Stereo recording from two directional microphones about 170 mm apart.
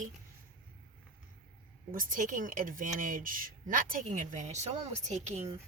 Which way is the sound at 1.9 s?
55° right (ahead or behind).